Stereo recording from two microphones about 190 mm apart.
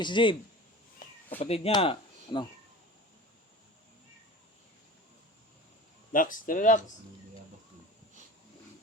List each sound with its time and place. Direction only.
0.0 s speech: 25° left (ahead or behind)
1.4 s speech: 30° left (ahead or behind)
6.1 s speech: 45° left (ahead or behind)